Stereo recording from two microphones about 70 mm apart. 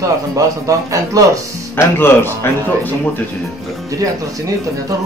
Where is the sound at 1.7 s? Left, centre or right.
Left.